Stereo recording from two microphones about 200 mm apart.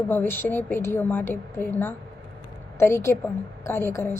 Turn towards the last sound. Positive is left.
turn(degrees=15)  # may be behind; listen again after turning